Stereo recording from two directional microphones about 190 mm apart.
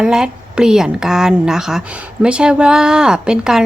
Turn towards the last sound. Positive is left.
turn(degrees=-5)  # may be behind; listen again after turning